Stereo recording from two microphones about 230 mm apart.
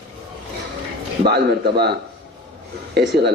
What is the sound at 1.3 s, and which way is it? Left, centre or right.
A man's voice, right.